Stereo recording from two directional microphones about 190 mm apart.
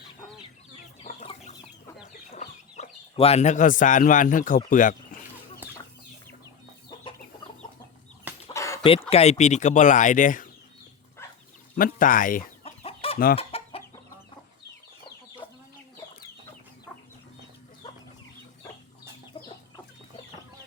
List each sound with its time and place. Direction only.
1.0 s chicken: 35° left (ahead or behind)
2.3 s speech: 40° left (ahead or behind)
8.5 s dog: 15° left (ahead or behind)
8.8 s speech: 30° left (ahead or behind)
11.8 s speech: 45° left (ahead or behind)
12.6 s chicken: 30° left (ahead or behind)